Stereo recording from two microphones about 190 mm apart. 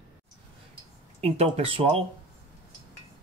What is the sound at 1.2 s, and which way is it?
Speech, 35° right (ahead or behind).